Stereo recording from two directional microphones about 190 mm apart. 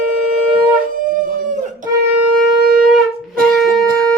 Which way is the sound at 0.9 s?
45° right (ahead or behind).